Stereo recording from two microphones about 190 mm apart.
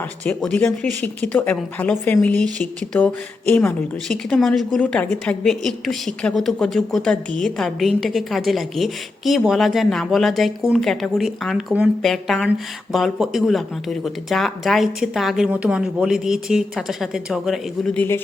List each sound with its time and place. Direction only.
0.3 s speech: 5° left (ahead or behind)